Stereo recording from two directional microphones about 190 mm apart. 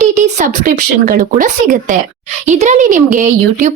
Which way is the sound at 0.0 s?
40° right (ahead or behind).